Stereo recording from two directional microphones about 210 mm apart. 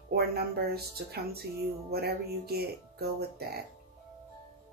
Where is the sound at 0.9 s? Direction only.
50° right (ahead or behind).